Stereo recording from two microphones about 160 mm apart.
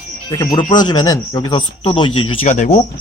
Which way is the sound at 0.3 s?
25° left (ahead or behind).